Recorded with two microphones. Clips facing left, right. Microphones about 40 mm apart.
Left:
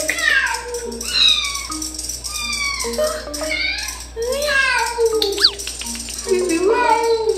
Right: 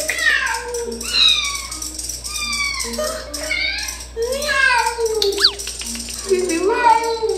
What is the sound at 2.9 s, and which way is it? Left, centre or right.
Music, centre.